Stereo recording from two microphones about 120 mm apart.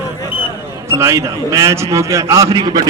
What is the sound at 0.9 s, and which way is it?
A man's voice, 25° right (ahead or behind).